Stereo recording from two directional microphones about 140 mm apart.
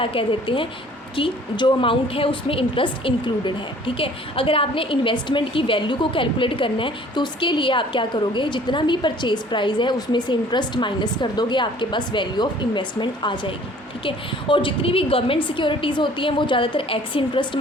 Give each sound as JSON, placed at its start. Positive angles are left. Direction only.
{"t": 0.0, "sound": "a woman's voice", "side_deg": 40}